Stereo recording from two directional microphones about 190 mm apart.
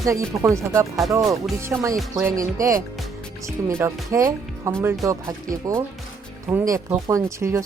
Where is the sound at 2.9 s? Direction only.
Centre (ahead or behind).